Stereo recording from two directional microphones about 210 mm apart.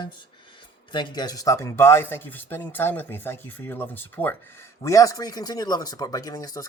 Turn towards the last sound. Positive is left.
turn(degrees=15)  # may be behind; listen again after turning